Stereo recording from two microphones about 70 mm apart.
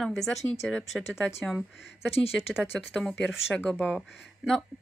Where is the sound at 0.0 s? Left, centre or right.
Centre.